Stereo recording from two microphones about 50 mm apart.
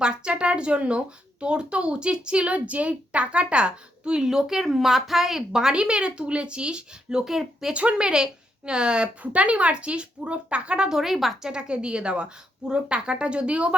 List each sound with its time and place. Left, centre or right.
0.0 s speech: centre
7.7 s speech: right; by 11.3 s centre
11.4 s speech: centre